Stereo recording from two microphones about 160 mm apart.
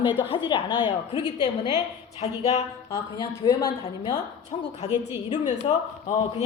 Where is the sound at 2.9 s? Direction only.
25° left (ahead or behind).